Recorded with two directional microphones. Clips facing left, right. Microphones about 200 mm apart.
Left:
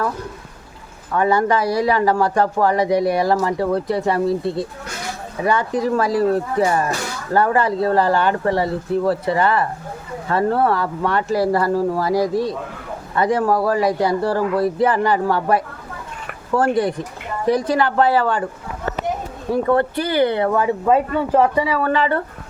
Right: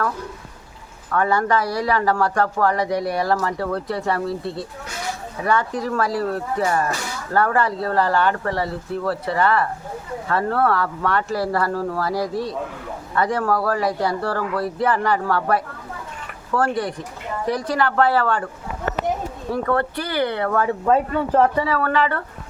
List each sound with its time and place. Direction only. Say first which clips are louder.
1.1 s speech: left 3 dB; 20° left (ahead or behind)
19.6 s speech: left 4 dB; 20° left (ahead or behind)